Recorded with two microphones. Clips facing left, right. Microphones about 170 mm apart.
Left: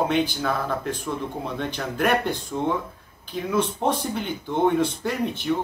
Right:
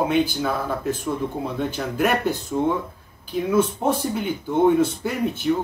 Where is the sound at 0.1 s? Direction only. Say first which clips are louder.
Right 2 dB; 5° right (ahead or behind).